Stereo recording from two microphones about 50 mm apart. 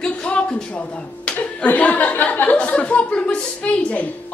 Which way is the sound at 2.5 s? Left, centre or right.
Left.